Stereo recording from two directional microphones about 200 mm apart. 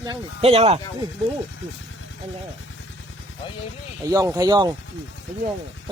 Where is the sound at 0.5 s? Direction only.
30° right (ahead or behind).